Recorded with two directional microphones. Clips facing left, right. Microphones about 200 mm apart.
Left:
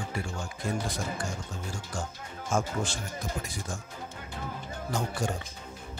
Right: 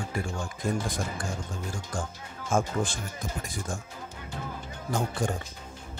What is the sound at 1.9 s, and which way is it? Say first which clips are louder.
Speech: right 2 dB; 55° right (ahead or behind).